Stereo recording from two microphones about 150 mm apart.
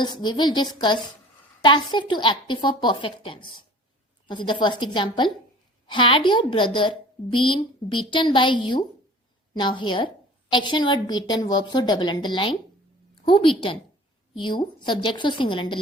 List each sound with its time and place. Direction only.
0.0 s a woman's voice: 30° left (ahead or behind)